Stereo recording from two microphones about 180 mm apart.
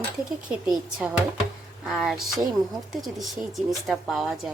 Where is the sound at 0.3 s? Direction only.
Centre (ahead or behind).